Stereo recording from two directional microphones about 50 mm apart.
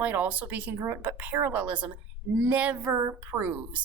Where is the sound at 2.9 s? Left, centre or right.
Right.